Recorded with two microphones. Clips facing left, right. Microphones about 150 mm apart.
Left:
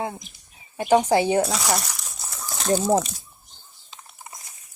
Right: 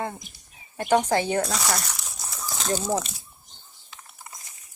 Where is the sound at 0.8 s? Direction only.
10° left (ahead or behind).